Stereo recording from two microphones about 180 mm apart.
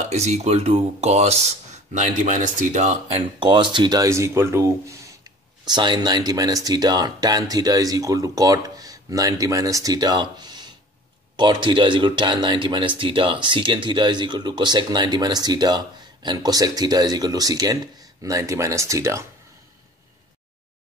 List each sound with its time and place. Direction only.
0.1 s speech: 40° right (ahead or behind); by 19.2 s 15° right (ahead or behind)